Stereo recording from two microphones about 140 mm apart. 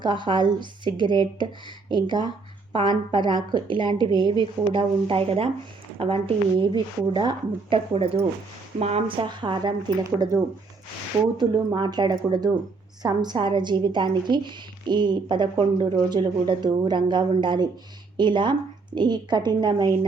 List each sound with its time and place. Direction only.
0.0 s a woman's voice: 35° right (ahead or behind)